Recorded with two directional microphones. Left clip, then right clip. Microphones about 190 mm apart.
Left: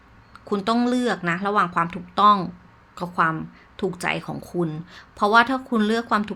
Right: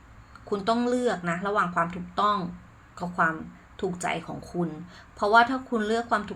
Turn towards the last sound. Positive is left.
turn(degrees=45)  # may be behind; listen again after turning